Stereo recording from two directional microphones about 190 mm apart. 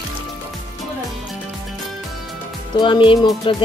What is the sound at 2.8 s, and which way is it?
Speech, 25° left (ahead or behind).